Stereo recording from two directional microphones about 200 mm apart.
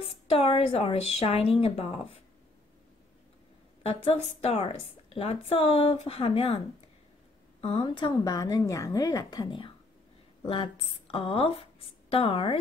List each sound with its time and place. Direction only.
0.3 s a woman's voice: 30° left (ahead or behind)
3.8 s a woman's voice: 30° left (ahead or behind)
7.6 s a woman's voice: 25° left (ahead or behind)